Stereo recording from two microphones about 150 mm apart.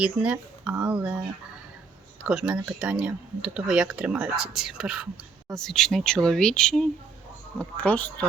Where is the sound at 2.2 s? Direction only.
5° right (ahead or behind).